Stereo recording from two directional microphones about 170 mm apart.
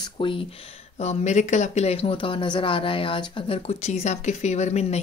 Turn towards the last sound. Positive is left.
turn(degrees=40)  # may be behind; listen again after turning